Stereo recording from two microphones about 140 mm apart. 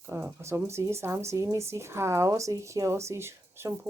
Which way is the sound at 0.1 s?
20° right (ahead or behind).